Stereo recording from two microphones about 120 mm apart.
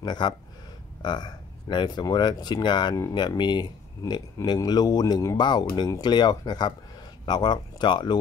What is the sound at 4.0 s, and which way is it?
Speech, 25° left (ahead or behind).